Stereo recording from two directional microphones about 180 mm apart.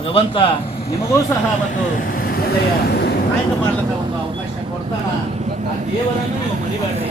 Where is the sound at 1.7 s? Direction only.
50° left (ahead or behind).